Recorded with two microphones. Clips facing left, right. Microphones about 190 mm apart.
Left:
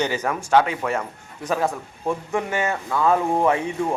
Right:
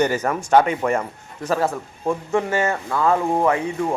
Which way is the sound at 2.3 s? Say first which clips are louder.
Right 5 dB; 15° left (ahead or behind).